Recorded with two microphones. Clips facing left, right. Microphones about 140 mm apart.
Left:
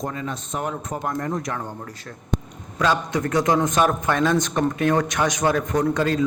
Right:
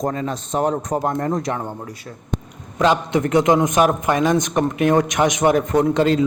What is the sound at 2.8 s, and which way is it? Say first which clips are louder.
A man's voice: right 4 dB; 20° right (ahead or behind).